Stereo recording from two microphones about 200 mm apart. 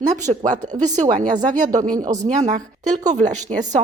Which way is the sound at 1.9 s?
20° right (ahead or behind).